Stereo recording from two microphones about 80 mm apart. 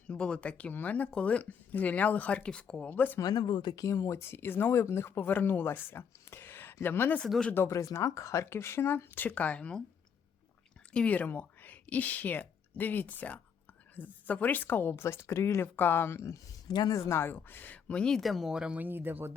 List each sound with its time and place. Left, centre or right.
0.1 s speech: centre
3.2 s speech: left
3.8 s speech: left
7.3 s speech: centre
7.7 s speech: left; by 9.8 s centre
10.9 s speech: centre; by 16.4 s left
16.6 s speech: left
16.9 s speech: left; by 18.2 s centre
18.2 s speech: centre
18.8 s speech: right